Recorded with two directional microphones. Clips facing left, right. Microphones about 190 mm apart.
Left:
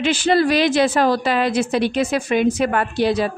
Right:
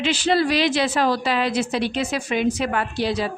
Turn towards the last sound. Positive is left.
turn(degrees=55)  # may be behind; listen again after turning